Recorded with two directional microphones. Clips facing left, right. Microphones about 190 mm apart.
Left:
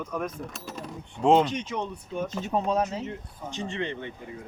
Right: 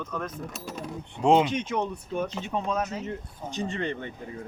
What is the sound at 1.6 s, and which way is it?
Speech, 55° right (ahead or behind).